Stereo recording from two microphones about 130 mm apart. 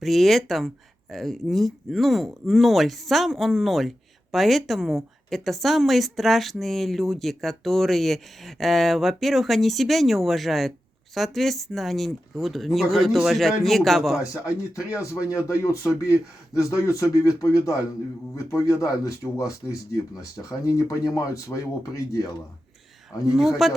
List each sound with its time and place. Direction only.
0.0 s speech: centre (ahead or behind)
14.8 s speech: 25° left (ahead or behind)
23.3 s speech: centre (ahead or behind)